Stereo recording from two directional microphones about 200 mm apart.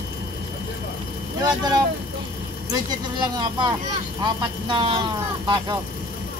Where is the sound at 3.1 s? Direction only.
20° right (ahead or behind).